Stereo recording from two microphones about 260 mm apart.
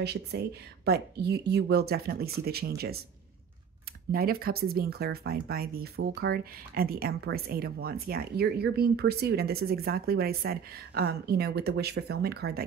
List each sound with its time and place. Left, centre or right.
0.0 s speech: right
4.1 s speech: right